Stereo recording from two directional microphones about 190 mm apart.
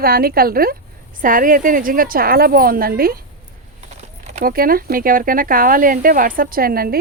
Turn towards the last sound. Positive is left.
turn(degrees=-50)  # may be behind; listen again after turning